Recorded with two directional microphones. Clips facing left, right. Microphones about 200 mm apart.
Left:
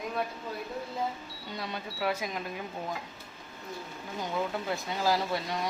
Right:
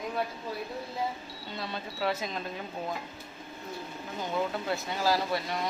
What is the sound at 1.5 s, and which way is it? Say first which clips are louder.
Speech: even; 15° left (ahead or behind).